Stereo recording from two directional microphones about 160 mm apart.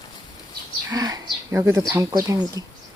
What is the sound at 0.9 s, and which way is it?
Speech, 25° right (ahead or behind).